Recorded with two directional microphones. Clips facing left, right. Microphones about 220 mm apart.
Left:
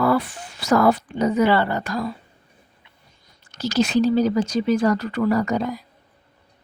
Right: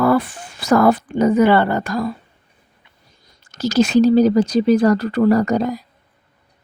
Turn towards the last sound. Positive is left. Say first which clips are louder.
# right 5 dB
turn(degrees=-40)  # may be behind; listen again after turning